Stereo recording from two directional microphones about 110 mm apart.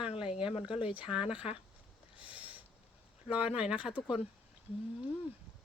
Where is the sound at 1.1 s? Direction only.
5° right (ahead or behind).